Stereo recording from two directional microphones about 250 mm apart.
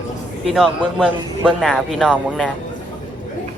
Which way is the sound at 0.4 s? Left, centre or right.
Centre.